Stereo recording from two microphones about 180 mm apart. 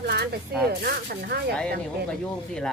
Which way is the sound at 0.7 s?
60° right (ahead or behind).